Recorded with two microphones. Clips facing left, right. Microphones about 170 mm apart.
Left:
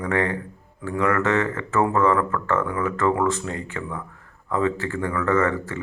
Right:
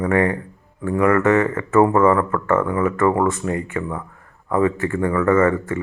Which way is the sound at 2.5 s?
45° right (ahead or behind).